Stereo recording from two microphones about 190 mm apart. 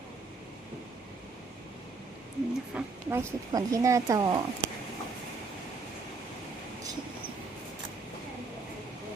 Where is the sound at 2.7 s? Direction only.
15° right (ahead or behind).